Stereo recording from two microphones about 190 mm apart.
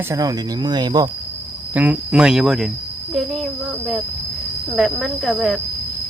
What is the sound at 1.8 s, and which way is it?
Speech, 5° right (ahead or behind).